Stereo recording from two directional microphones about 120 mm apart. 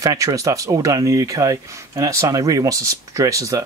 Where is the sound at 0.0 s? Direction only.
30° right (ahead or behind).